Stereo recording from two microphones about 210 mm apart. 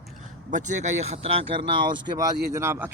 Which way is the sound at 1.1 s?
25° right (ahead or behind).